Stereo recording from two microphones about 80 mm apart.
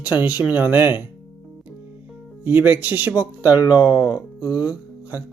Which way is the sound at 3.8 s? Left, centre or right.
Centre.